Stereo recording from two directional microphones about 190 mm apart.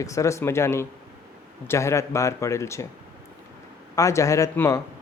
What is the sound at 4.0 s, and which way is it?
Speech, 15° left (ahead or behind).